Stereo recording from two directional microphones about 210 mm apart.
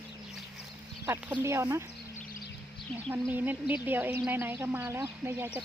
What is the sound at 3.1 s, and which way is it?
Speech, 10° right (ahead or behind).